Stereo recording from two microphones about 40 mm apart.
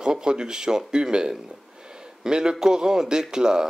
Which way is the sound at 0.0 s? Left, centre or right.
Right.